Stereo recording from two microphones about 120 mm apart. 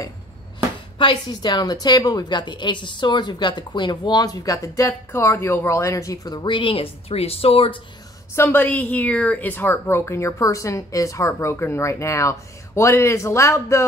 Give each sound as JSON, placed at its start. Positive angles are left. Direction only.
{"t": 0.9, "sound": "a woman's voice", "side_deg": 40}
{"t": 8.4, "sound": "a woman's voice", "side_deg": 15}